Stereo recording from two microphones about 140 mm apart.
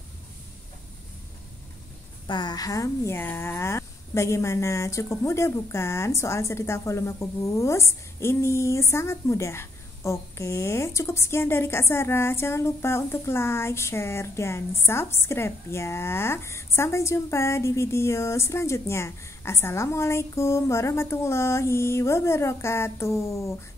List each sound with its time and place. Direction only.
2.2 s speech: 30° left (ahead or behind)